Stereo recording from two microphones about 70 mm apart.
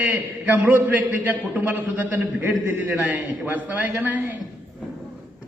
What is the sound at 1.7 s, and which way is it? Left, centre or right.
A man's voice, right.